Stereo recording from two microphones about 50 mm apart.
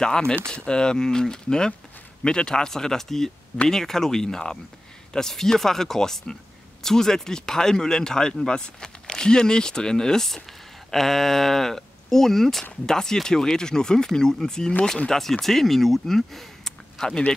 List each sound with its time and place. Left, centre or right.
0.0 s speech: centre